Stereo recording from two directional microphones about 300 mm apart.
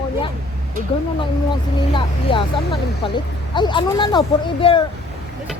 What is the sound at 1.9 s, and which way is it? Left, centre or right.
Speech, centre.